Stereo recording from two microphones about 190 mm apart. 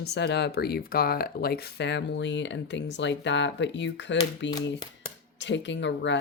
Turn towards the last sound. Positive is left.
turn(degrees=70)  # may be behind; listen again after turning